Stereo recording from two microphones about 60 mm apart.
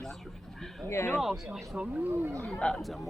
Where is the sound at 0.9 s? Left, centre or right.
Left.